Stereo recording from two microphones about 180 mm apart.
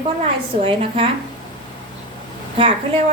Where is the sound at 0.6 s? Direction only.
30° right (ahead or behind).